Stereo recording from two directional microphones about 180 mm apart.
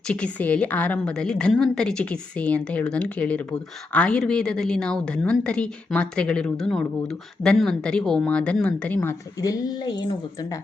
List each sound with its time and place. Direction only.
0.1 s a woman's voice: 10° left (ahead or behind)